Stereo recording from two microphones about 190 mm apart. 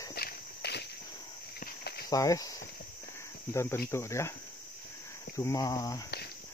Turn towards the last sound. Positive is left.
turn(degrees=20)  # may be behind; listen again after turning